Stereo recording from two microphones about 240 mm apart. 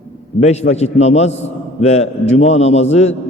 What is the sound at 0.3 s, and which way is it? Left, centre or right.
A man's voice, left.